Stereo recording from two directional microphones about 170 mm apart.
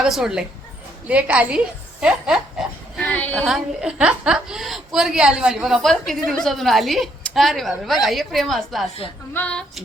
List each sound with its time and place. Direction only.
0.0 s a woman's voice: 5° right (ahead or behind)
3.1 s a sound: 10° left (ahead or behind)
3.4 s a woman's voice: 5° right (ahead or behind)